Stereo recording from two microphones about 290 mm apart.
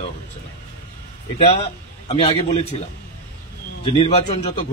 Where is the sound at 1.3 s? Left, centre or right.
Centre.